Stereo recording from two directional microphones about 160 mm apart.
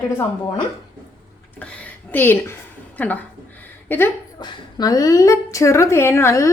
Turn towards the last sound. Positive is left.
turn(degrees=15)  # may be behind; listen again after turning